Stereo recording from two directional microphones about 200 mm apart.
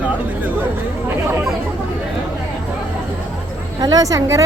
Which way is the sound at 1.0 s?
5° right (ahead or behind).